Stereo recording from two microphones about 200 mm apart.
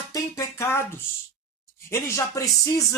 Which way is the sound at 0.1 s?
15° left (ahead or behind).